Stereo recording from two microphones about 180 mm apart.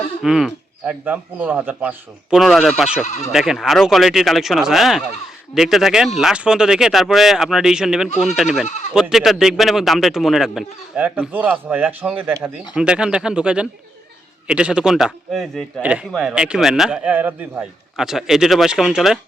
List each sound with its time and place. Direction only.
0.2 s a man's voice: 5° right (ahead or behind)
8.6 s speech: 40° left (ahead or behind)
8.9 s a man's voice: 5° right (ahead or behind)